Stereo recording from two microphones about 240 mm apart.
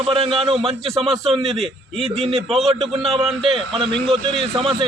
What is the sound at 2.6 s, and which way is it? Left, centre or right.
A man's voice, right.